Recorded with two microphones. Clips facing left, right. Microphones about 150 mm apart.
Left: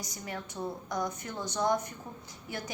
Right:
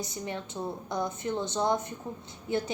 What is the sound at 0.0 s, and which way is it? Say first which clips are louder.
A woman's voice: right 4 dB; 25° right (ahead or behind).